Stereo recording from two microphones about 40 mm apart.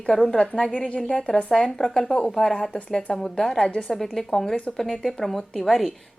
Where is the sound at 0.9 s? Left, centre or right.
Left.